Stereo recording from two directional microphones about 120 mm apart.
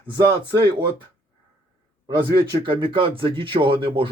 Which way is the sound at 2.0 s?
40° right (ahead or behind).